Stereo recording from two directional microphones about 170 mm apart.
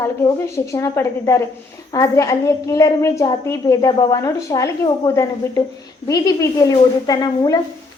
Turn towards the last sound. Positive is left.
turn(degrees=25)  # may be behind; listen again after turning